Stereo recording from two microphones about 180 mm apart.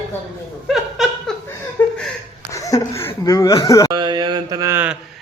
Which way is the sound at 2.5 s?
15° left (ahead or behind).